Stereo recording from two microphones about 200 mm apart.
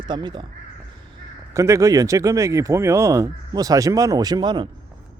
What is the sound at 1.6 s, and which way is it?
Speech, 15° right (ahead or behind).